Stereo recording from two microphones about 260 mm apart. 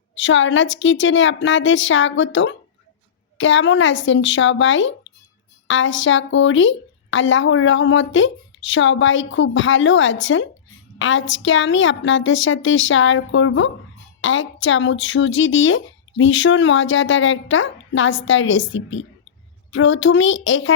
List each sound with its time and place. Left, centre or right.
0.2 s a woman's voice: left